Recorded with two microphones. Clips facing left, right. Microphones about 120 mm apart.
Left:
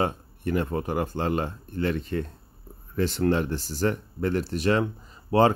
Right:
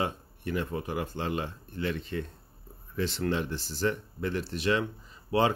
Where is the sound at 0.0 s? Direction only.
50° left (ahead or behind).